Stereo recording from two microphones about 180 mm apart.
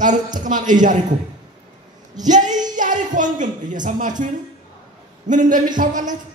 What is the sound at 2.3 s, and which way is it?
Female singing, 45° right (ahead or behind).